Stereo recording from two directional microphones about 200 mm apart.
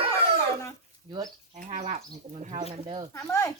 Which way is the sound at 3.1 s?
15° left (ahead or behind).